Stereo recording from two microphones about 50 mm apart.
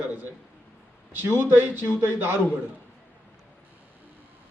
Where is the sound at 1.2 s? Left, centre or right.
Right.